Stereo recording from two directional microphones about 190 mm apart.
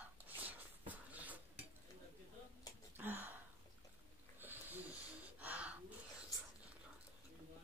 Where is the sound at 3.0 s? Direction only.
10° right (ahead or behind).